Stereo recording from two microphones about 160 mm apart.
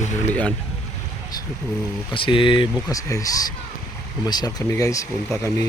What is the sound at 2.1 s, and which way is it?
Speech, 30° left (ahead or behind).